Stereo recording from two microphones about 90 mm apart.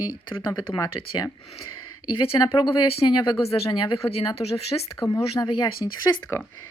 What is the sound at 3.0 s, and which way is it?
Speech, 60° left (ahead or behind).